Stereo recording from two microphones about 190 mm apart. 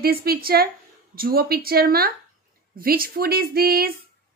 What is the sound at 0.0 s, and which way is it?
A woman's voice, 55° right (ahead or behind).